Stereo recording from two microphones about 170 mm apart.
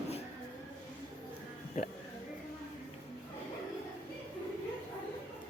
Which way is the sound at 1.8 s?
50° left (ahead or behind).